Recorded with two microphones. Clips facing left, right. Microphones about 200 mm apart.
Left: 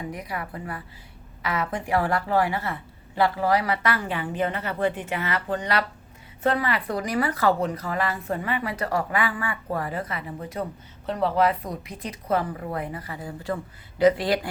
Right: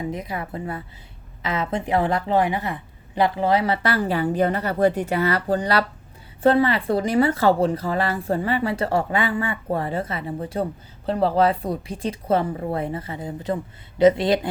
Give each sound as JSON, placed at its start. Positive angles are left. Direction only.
{"t": 0.0, "sound": "speech", "side_deg": -25}